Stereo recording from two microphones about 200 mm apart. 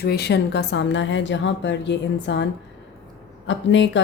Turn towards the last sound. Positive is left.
turn(degrees=65)  # may be behind; listen again after turning